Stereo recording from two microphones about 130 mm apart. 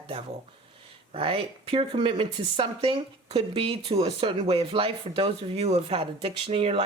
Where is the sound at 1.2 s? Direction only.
45° right (ahead or behind).